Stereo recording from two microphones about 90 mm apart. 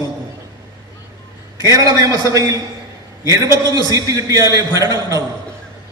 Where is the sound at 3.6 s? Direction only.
45° right (ahead or behind).